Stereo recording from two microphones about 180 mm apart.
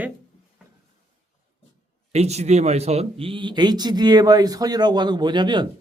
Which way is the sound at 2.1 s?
35° right (ahead or behind).